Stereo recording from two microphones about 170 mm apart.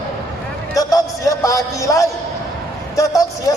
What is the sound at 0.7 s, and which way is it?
Speech, 20° left (ahead or behind).